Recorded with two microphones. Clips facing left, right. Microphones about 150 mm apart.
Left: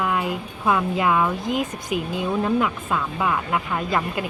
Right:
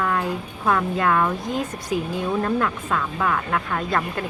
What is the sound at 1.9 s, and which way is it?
Speech, 75° left (ahead or behind).